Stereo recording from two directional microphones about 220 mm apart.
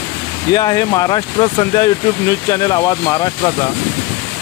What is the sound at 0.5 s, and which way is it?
Speech, 20° left (ahead or behind).